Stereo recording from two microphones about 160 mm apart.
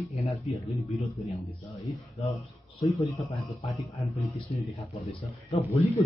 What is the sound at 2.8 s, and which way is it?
Speech, 20° left (ahead or behind).